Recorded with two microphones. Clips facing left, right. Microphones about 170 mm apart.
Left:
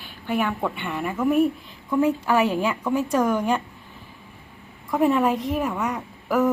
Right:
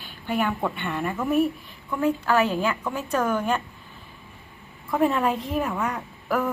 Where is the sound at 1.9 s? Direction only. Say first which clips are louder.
Left 2 dB; 20° left (ahead or behind).